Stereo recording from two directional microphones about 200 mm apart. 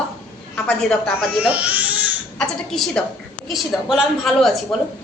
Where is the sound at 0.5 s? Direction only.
5° left (ahead or behind).